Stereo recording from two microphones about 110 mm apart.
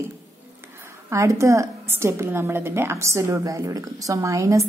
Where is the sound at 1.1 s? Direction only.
30° right (ahead or behind).